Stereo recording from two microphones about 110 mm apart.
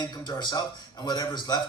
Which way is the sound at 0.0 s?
40° left (ahead or behind).